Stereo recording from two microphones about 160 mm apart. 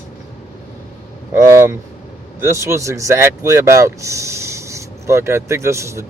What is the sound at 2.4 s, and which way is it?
Speech, 20° right (ahead or behind).